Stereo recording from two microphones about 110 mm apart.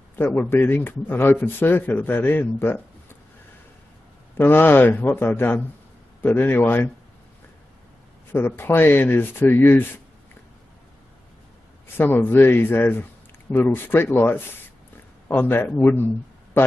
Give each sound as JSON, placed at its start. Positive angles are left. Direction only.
{"t": 0.1, "sound": "a man's voice", "side_deg": 20}
{"t": 4.4, "sound": "a man's voice", "side_deg": 20}
{"t": 8.3, "sound": "a man's voice", "side_deg": 20}
{"t": 12.0, "sound": "a man's voice", "side_deg": 20}